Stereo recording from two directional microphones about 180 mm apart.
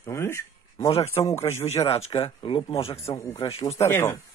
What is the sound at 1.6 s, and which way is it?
Speech, 35° left (ahead or behind).